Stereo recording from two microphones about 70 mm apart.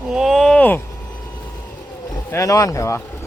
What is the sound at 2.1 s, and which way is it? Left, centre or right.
Speech, left.